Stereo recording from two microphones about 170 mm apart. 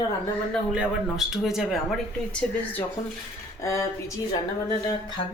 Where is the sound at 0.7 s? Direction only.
Centre (ahead or behind).